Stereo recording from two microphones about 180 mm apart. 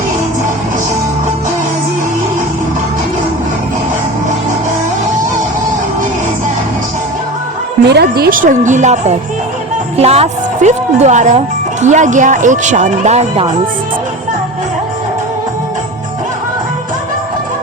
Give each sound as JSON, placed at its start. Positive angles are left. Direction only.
{"t": 7.9, "sound": "a woman's voice", "side_deg": -65}